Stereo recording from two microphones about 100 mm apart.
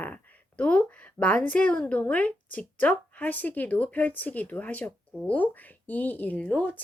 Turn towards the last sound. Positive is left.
turn(degrees=15)  # may be behind; listen again after turning